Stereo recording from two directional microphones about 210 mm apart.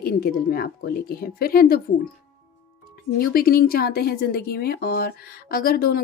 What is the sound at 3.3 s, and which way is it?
Speech, 45° left (ahead or behind).